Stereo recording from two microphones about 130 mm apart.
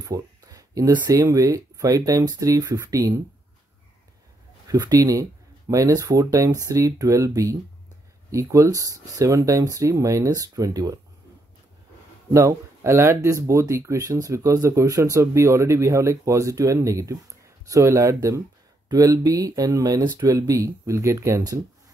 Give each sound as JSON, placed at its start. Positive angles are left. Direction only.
{"t": 0.0, "sound": "speech", "side_deg": -25}
{"t": 4.6, "sound": "speech", "side_deg": -30}
{"t": 12.3, "sound": "speech", "side_deg": -20}